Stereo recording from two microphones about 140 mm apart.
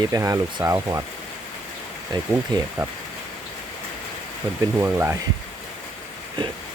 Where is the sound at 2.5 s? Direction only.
30° right (ahead or behind).